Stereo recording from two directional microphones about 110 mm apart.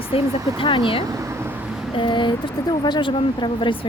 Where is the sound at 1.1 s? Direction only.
25° right (ahead or behind).